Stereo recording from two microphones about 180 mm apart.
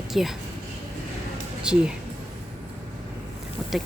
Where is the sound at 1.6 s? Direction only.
5° right (ahead or behind).